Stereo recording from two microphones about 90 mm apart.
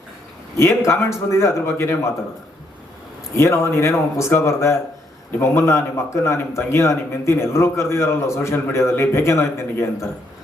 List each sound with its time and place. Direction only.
0.5 s a man's voice: 30° left (ahead or behind)
3.3 s a man's voice: 30° left (ahead or behind)